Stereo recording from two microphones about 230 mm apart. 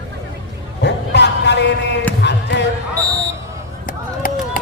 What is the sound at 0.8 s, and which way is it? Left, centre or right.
Speech, left.